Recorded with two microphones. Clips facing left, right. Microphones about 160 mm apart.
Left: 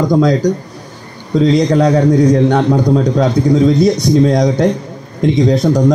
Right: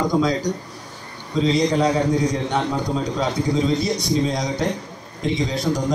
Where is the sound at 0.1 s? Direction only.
50° left (ahead or behind).